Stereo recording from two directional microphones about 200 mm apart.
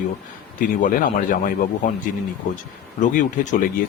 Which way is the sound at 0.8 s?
40° left (ahead or behind).